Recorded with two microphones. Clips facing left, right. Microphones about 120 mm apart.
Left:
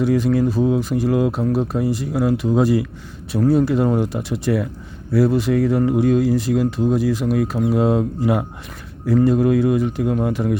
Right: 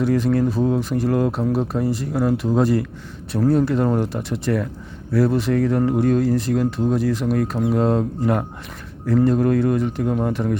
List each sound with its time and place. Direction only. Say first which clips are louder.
0.0 s speech: left 1 dB; centre (ahead or behind)